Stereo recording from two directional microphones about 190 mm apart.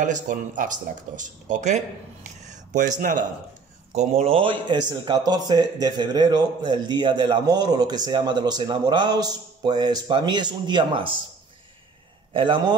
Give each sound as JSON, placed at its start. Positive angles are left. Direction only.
{"t": 0.0, "sound": "speech", "side_deg": -40}
{"t": 2.5, "sound": "a sound", "side_deg": -40}
{"t": 3.0, "sound": "speech", "side_deg": -45}
{"t": 12.3, "sound": "a man's voice", "side_deg": -25}